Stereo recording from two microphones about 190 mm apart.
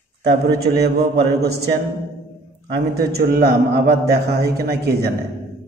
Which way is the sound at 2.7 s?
55° right (ahead or behind).